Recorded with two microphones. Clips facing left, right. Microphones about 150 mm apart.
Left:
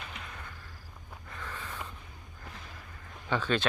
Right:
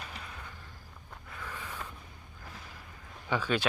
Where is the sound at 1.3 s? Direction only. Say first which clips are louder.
Left 1 dB; 10° right (ahead or behind).